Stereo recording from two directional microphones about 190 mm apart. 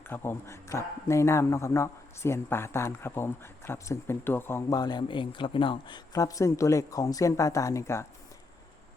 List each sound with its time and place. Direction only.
0.1 s speech: 10° left (ahead or behind)